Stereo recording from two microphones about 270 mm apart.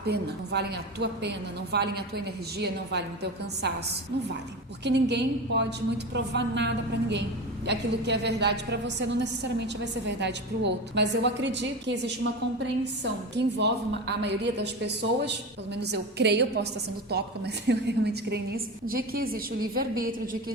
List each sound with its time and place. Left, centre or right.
0.0 s a woman's voice: right
4.8 s a woman's voice: right